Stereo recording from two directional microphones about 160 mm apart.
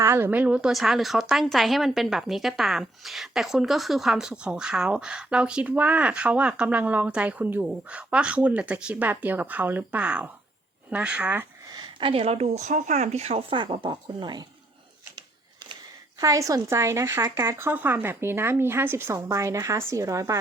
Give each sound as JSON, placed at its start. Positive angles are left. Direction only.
{"t": 0.0, "sound": "a woman's voice", "side_deg": -15}
{"t": 11.7, "sound": "speech", "side_deg": -30}
{"t": 16.2, "sound": "a woman's voice", "side_deg": -20}